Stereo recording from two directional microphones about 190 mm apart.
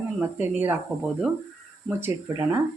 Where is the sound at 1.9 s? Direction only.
10° right (ahead or behind).